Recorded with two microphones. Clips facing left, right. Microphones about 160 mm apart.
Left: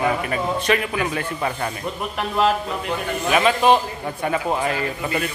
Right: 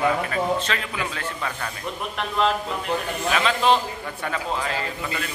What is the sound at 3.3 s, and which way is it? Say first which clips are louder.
Speech: left 4 dB; 15° left (ahead or behind).